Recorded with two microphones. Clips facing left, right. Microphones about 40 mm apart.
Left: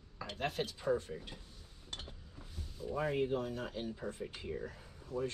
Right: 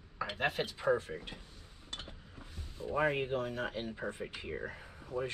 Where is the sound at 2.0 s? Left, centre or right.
Right.